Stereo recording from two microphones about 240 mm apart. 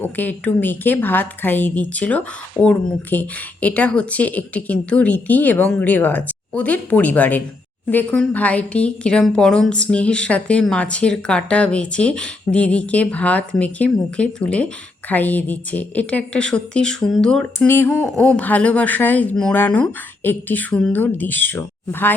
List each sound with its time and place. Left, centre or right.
0.0 s a woman's voice: centre